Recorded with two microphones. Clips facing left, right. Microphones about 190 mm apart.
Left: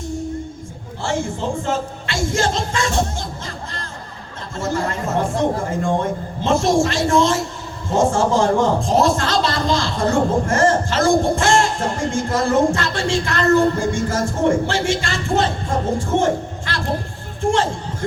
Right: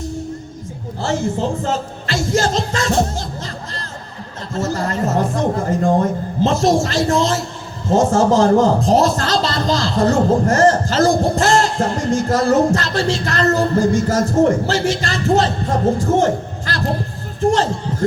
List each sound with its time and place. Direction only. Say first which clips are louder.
1.2 s music: right 3 dB; 40° right (ahead or behind)
4.5 s a man's voice: right 2 dB; 40° right (ahead or behind)